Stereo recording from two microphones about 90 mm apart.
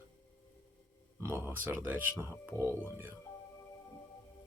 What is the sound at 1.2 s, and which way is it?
Speech, 25° right (ahead or behind).